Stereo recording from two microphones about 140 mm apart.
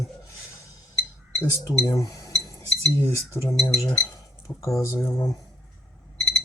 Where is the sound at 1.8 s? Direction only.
25° left (ahead or behind).